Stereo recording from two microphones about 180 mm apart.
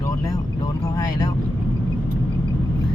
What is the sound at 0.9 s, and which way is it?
Vehicle, 20° left (ahead or behind).